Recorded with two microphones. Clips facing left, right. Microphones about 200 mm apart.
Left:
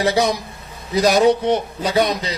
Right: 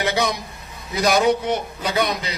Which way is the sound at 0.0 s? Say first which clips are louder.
Left 4 dB; 40° left (ahead or behind).